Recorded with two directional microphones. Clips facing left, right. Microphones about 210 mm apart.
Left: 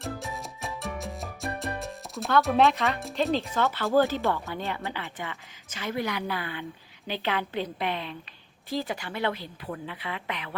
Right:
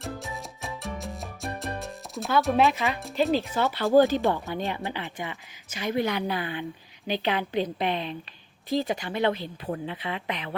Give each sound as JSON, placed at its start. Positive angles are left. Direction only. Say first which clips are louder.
{"t": 0.0, "sound": "music", "louder": "even", "side_deg": 0}
{"t": 3.5, "sound": "speech", "louder": "right 5 dB", "side_deg": -15}